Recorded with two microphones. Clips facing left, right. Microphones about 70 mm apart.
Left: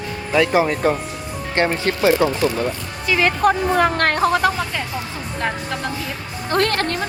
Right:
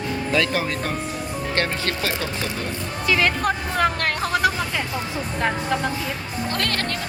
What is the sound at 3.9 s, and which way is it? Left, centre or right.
Speech, left.